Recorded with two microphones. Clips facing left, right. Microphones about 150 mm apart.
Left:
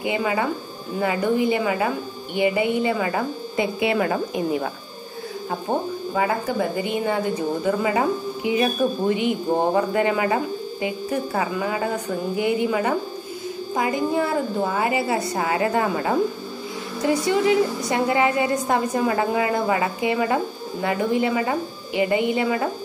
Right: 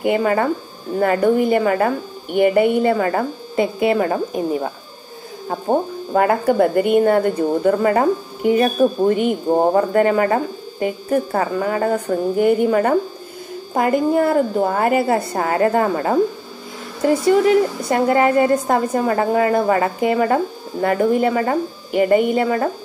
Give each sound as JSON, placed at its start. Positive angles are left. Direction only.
{"t": 0.0, "sound": "a woman's voice", "side_deg": -50}
{"t": 6.1, "sound": "a woman's voice", "side_deg": -60}